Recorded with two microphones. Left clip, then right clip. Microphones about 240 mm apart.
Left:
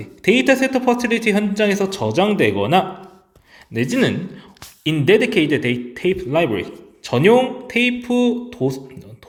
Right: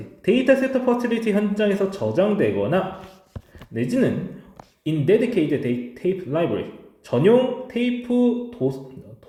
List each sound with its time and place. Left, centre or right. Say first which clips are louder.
0.3 s speech: left 3 dB; left